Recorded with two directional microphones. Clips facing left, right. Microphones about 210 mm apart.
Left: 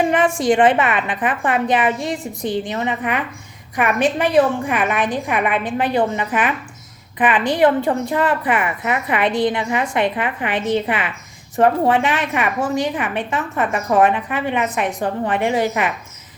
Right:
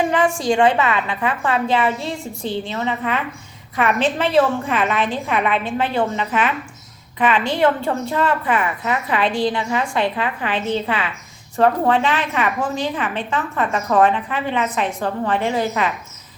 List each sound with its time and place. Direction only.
0.1 s a woman's voice: 20° left (ahead or behind)
7.2 s a woman's voice: 15° left (ahead or behind)